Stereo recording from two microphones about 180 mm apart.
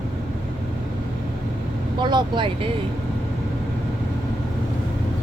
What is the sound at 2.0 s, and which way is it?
Speech, 25° right (ahead or behind).